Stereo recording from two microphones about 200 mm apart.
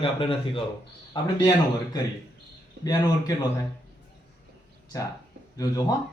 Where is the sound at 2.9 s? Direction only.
20° left (ahead or behind).